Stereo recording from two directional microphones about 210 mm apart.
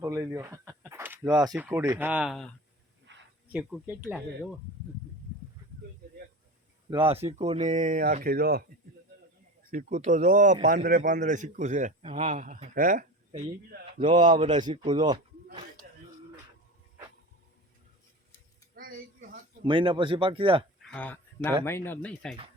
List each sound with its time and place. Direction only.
0.0 s speech: 15° right (ahead or behind)
3.1 s a sound: 60° right (ahead or behind)
3.5 s speech: 5° right (ahead or behind)
6.9 s a man's voice: 25° right (ahead or behind); by 8.6 s 45° right (ahead or behind)
9.7 s a man's voice: 40° right (ahead or behind)
14.4 s speech: 20° right (ahead or behind)
18.8 s a sound: 45° right (ahead or behind)
19.6 s speech: 25° right (ahead or behind)
20.8 s a sound: 5° left (ahead or behind)
21.8 s speech: 5° left (ahead or behind)